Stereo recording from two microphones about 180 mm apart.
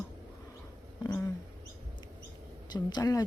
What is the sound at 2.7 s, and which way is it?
Speech, 20° left (ahead or behind).